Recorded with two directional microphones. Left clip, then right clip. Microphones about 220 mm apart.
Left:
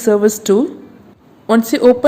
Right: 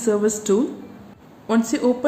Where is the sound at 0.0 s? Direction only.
35° left (ahead or behind).